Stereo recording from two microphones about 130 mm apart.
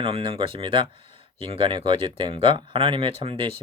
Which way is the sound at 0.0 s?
45° right (ahead or behind).